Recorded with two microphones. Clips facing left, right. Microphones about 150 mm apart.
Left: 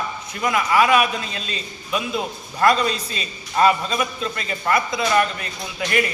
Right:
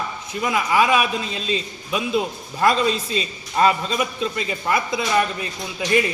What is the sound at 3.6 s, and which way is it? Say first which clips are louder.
A man's voice: left 1 dB; 20° right (ahead or behind).